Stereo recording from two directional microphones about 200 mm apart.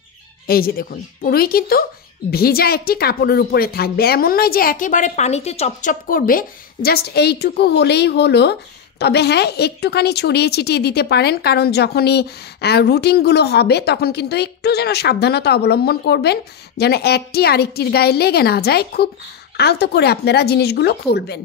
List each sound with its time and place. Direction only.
0.5 s a woman's voice: 50° left (ahead or behind)